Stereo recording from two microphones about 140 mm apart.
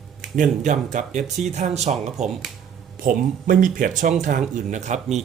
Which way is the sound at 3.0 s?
75° right (ahead or behind).